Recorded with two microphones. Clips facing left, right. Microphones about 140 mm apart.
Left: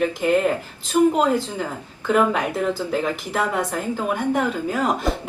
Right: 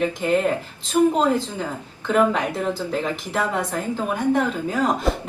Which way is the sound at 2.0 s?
5° left (ahead or behind).